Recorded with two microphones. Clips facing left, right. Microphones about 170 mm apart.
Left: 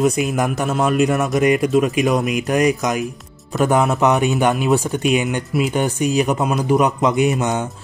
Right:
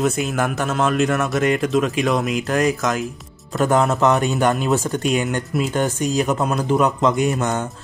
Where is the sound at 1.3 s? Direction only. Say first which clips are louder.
Left 3 dB; 15° left (ahead or behind).